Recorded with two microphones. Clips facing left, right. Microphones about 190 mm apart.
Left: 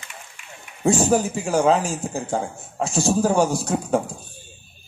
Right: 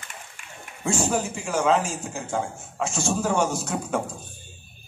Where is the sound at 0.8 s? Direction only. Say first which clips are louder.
Left 6 dB; 35° left (ahead or behind).